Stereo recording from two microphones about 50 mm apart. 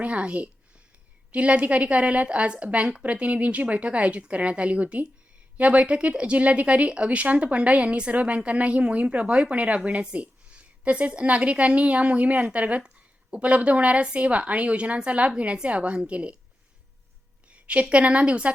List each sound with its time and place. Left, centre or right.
0.0 s a woman's voice: right
17.5 s a woman's voice: right